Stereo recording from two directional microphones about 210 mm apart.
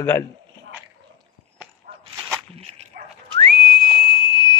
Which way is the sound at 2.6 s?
30° right (ahead or behind).